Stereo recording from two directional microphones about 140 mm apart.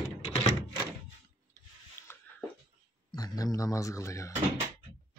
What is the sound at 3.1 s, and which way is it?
Speech, 25° left (ahead or behind).